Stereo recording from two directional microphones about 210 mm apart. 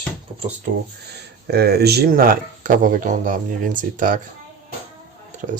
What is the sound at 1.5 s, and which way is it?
Speech, 50° right (ahead or behind).